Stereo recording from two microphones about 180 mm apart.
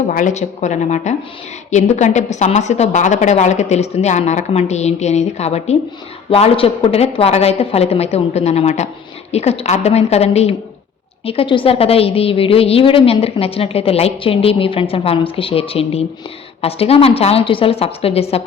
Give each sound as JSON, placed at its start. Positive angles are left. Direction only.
{"t": 0.1, "sound": "a woman's voice", "side_deg": 45}